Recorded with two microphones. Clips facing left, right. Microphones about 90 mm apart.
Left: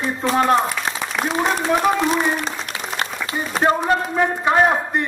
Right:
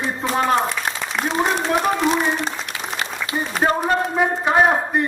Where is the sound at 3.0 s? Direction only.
35° left (ahead or behind).